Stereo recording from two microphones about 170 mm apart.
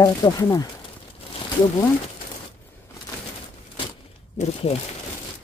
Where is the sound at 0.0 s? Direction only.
20° left (ahead or behind).